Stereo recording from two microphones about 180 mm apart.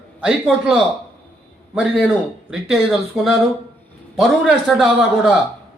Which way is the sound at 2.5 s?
Centre (ahead or behind).